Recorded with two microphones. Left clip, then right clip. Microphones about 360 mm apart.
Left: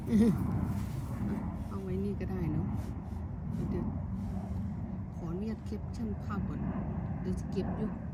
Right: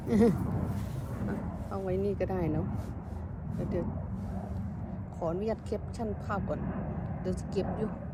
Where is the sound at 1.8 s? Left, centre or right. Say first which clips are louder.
Right 8 dB; centre.